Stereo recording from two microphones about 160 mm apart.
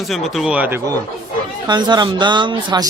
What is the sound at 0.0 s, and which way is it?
Speech, centre (ahead or behind).